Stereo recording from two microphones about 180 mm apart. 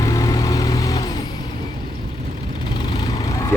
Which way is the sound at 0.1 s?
20° left (ahead or behind).